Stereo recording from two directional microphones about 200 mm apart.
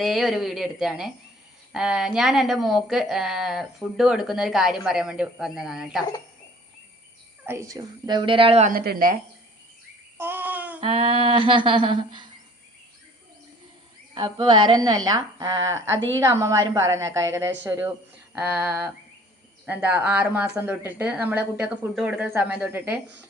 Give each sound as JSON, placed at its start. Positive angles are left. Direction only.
{"t": 0.0, "sound": "speech", "side_deg": 0}
{"t": 7.4, "sound": "a woman's voice", "side_deg": -15}
{"t": 8.7, "sound": "speech", "side_deg": -50}
{"t": 10.2, "sound": "babbling", "side_deg": -10}
{"t": 10.8, "sound": "a woman's voice", "side_deg": -30}
{"t": 14.1, "sound": "a woman's voice", "side_deg": -25}